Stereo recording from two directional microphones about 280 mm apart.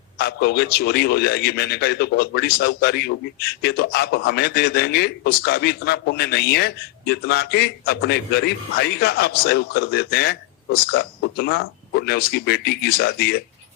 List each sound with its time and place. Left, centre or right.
0.2 s a man's voice: left